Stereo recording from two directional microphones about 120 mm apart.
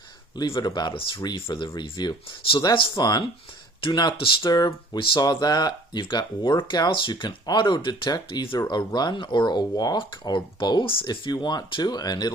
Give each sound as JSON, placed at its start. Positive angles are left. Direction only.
{"t": 0.3, "sound": "speech", "side_deg": 40}